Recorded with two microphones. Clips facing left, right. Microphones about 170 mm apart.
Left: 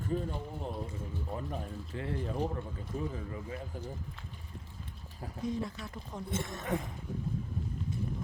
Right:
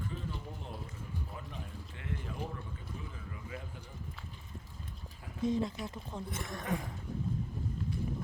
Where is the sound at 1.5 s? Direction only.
35° left (ahead or behind).